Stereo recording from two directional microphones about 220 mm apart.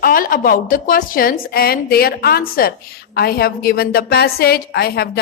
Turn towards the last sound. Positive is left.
turn(degrees=45)  # may be behind; listen again after turning